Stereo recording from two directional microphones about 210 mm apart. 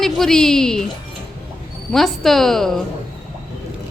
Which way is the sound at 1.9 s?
Centre (ahead or behind).